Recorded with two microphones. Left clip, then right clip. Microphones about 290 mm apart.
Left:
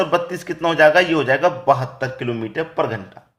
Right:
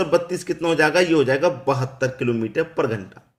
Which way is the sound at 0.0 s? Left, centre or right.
Centre.